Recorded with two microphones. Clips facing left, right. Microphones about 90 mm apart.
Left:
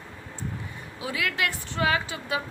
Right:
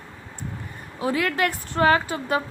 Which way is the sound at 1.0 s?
40° right (ahead or behind).